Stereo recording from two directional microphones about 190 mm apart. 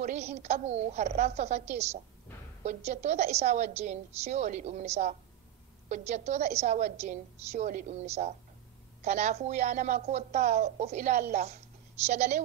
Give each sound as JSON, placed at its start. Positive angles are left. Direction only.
{"t": 0.0, "sound": "speech", "side_deg": -35}